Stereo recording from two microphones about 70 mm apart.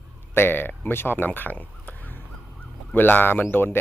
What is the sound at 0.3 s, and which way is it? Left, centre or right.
Speech, left.